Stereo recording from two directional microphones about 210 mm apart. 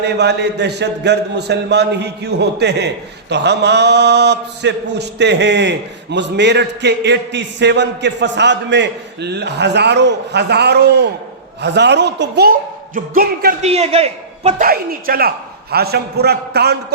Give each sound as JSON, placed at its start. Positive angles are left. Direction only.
{"t": 0.0, "sound": "a man's voice", "side_deg": -55}
{"t": 13.6, "sound": "a man's voice", "side_deg": -30}
{"t": 14.6, "sound": "a man's voice", "side_deg": -45}